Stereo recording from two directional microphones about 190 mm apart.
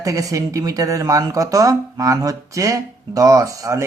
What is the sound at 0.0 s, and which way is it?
Speech, 15° right (ahead or behind).